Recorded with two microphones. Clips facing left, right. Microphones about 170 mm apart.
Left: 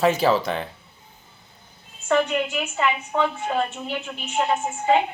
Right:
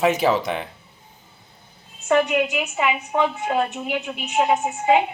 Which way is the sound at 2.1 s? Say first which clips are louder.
Right 2 dB; 15° right (ahead or behind).